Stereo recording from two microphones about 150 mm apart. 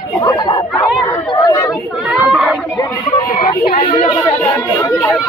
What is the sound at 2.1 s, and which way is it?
Speech, 5° right (ahead or behind).